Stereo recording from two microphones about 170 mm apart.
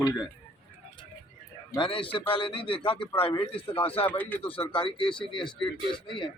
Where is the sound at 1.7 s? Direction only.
30° left (ahead or behind).